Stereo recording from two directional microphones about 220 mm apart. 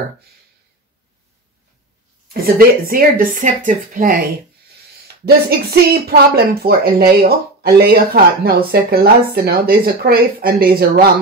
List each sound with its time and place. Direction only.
2.4 s speech: 40° right (ahead or behind)